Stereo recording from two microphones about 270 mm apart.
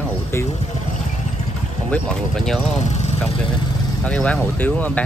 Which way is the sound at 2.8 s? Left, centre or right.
Left.